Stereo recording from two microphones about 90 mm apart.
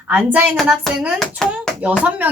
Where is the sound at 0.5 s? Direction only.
Centre (ahead or behind).